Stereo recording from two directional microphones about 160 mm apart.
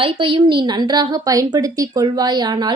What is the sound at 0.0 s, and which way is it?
A woman's voice, 35° right (ahead or behind).